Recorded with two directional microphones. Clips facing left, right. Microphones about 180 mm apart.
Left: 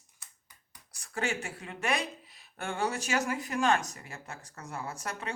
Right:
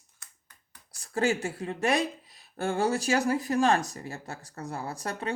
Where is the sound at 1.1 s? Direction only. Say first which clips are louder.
Right 7 dB; 35° right (ahead or behind).